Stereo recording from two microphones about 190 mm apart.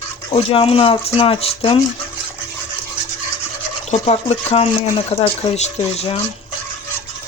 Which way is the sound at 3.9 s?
35° left (ahead or behind).